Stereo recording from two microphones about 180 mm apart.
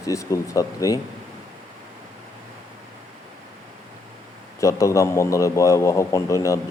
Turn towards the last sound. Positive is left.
turn(degrees=20)  # may be behind; listen again after turning